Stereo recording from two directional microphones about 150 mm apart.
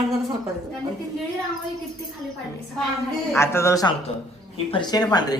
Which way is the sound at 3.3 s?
20° left (ahead or behind).